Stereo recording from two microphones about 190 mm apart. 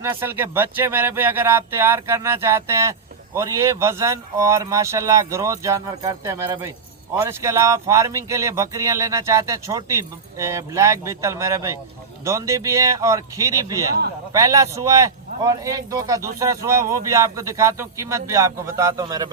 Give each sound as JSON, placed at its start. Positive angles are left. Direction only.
{"t": 0.0, "sound": "a man's voice", "side_deg": -10}